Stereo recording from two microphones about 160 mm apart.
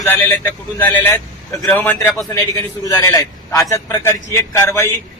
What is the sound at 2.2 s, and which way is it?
A man's voice, 25° left (ahead or behind).